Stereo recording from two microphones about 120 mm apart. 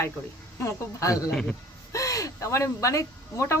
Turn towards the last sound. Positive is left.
turn(degrees=25)  # may be behind; listen again after turning